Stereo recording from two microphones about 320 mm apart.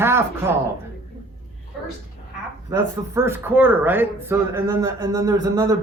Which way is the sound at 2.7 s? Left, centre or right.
Centre.